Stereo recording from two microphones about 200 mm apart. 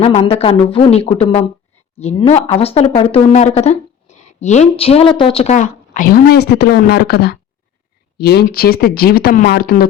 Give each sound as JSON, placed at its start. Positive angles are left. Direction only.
{"t": 0.0, "sound": "speech", "side_deg": 30}